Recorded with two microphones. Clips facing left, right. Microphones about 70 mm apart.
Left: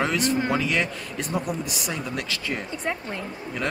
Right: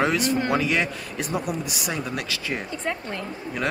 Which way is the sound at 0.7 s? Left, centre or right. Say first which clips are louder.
Right 1 dB; centre.